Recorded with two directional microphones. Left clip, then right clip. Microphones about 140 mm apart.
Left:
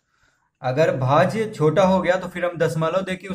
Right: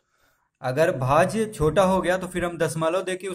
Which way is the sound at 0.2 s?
35° right (ahead or behind).